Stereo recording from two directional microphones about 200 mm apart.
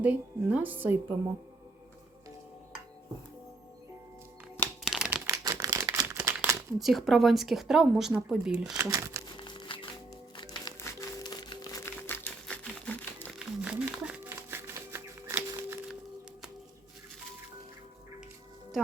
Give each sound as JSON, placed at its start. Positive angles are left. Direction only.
{"t": 0.0, "sound": "a woman's voice", "side_deg": -10}
{"t": 4.9, "sound": "typewriter", "side_deg": -5}
{"t": 5.2, "sound": "crumpling", "side_deg": -15}
{"t": 6.7, "sound": "a woman's voice", "side_deg": 0}
{"t": 8.8, "sound": "speech", "side_deg": -15}
{"t": 9.4, "sound": "music", "side_deg": 25}
{"t": 13.6, "sound": "a sound", "side_deg": -5}